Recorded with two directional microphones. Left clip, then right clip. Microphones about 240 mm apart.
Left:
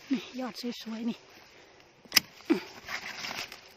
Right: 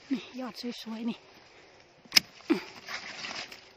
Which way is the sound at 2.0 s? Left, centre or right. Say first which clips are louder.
Right 1 dB; centre.